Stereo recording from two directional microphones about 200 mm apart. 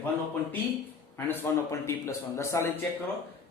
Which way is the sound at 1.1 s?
10° left (ahead or behind).